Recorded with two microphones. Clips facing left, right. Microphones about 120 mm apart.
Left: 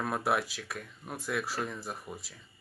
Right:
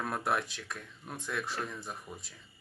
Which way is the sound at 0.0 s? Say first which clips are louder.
Left 2 dB; 5° left (ahead or behind).